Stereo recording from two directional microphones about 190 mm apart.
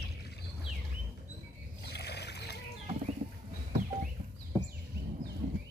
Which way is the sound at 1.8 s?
60° left (ahead or behind).